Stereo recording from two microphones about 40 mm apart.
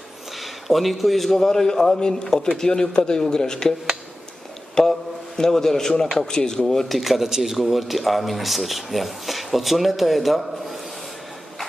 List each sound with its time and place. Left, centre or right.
0.4 s a man's voice: centre
4.8 s a man's voice: centre